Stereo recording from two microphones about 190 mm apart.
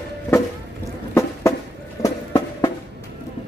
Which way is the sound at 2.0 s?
20° left (ahead or behind).